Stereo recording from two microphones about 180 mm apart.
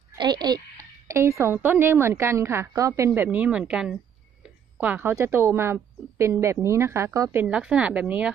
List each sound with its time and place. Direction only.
0.2 s speech: 25° right (ahead or behind); by 8.3 s 5° right (ahead or behind)